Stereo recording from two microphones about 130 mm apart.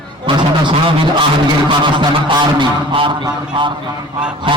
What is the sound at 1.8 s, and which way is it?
A man's voice, 40° right (ahead or behind).